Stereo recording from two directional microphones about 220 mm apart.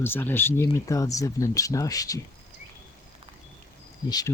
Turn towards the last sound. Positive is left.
turn(degrees=15)  # may be behind; listen again after turning